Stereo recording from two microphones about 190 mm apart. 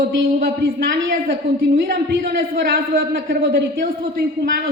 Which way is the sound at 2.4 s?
50° right (ahead or behind).